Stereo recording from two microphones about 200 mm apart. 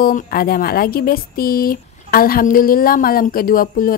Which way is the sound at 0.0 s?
45° left (ahead or behind).